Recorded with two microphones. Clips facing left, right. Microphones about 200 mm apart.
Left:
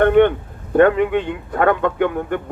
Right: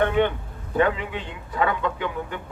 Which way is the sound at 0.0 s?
55° left (ahead or behind).